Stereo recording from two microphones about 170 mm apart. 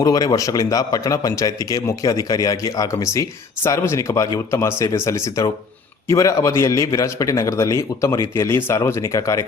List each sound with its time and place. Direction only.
0.0 s a man's voice: 20° left (ahead or behind)